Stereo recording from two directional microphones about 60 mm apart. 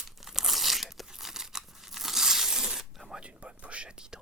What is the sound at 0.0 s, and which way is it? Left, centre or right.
Tearing, centre.